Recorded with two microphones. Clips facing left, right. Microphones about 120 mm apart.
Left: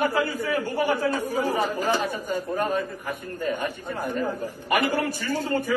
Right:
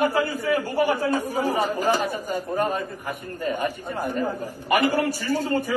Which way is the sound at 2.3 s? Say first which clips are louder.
Even; 15° right (ahead or behind).